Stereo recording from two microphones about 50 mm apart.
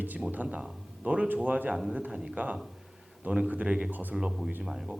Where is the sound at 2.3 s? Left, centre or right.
Right.